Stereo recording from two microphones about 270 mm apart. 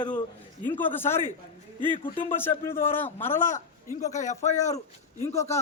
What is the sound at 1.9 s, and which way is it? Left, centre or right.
A man's voice, centre.